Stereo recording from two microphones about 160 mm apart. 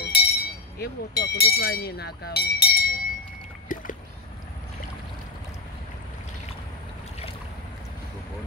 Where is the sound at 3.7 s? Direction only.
55° left (ahead or behind).